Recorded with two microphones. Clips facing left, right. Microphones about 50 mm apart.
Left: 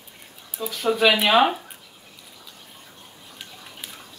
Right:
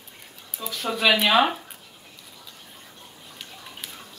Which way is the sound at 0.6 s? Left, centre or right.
Centre.